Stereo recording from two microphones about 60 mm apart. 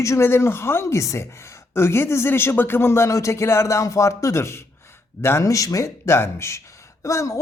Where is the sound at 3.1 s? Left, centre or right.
Left.